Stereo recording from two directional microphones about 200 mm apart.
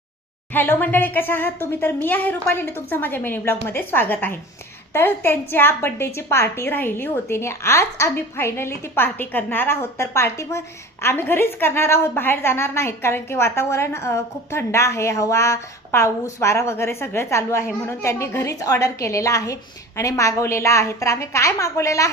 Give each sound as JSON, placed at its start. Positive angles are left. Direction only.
{"t": 0.5, "sound": "a woman's voice", "side_deg": 10}